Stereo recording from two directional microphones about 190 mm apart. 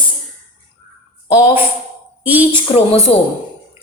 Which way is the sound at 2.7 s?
35° left (ahead or behind).